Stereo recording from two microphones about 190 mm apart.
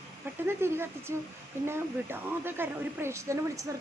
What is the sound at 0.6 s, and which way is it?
A woman's voice, 15° right (ahead or behind).